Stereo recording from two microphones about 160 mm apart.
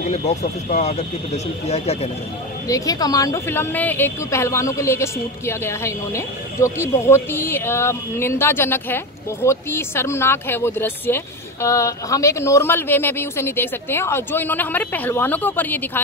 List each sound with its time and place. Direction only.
0.1 s speech: 45° left (ahead or behind)
2.7 s speech: 20° left (ahead or behind)